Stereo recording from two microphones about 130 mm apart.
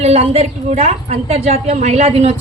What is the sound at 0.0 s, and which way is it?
A woman's voice, 50° right (ahead or behind).